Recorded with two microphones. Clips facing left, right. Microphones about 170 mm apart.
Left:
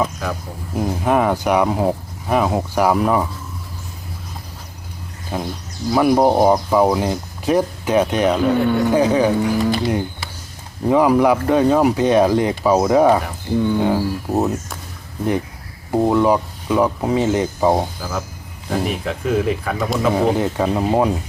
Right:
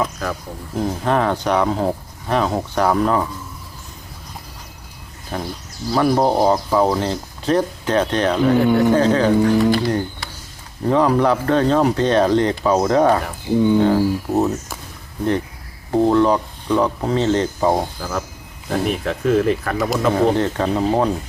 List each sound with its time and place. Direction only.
0.0 s speech: centre (ahead or behind)
5.3 s speech: 10° left (ahead or behind)
8.5 s speech: 5° right (ahead or behind)
8.9 s speech: 10° left (ahead or behind)
15.9 s speech: 10° left (ahead or behind)